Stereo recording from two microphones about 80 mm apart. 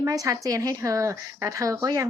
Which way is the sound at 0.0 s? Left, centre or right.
Right.